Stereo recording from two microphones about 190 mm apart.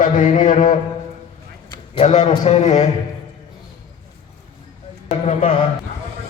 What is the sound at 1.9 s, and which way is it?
Speech, 40° left (ahead or behind).